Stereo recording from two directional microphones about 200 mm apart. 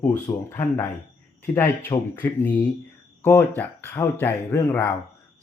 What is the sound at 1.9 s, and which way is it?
Speech, 20° left (ahead or behind).